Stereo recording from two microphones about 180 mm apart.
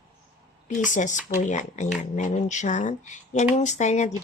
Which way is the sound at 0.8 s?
45° left (ahead or behind).